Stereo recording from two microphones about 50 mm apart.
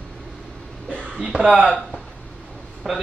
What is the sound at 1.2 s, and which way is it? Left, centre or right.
Speech, centre.